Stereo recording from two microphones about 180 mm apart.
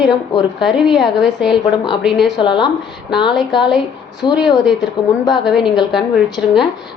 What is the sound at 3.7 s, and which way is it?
Speech, 5° right (ahead or behind).